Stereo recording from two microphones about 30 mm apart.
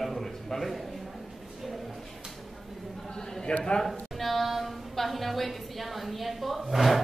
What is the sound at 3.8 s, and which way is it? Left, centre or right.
A woman's voice, centre.